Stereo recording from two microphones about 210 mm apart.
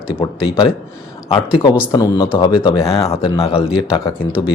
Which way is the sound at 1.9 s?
15° left (ahead or behind).